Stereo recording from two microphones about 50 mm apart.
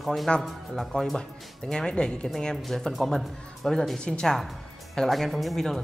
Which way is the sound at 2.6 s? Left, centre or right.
Centre.